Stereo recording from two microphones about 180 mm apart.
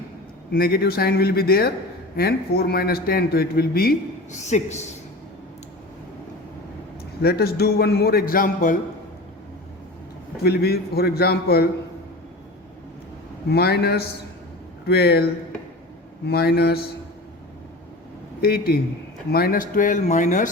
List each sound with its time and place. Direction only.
0.5 s speech: 55° left (ahead or behind)
4.3 s speech: 40° left (ahead or behind)
7.2 s speech: 60° left (ahead or behind)
10.4 s speech: 60° left (ahead or behind)
13.5 s speech: 65° left (ahead or behind)
18.4 s speech: 60° left (ahead or behind)